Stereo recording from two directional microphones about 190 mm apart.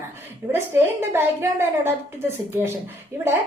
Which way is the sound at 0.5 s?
15° right (ahead or behind).